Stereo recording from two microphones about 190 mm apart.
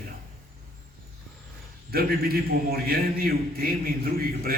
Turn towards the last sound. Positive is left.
turn(degrees=-50)  # may be behind; listen again after turning